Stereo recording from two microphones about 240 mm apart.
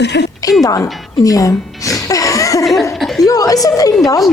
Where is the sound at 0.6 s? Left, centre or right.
Centre.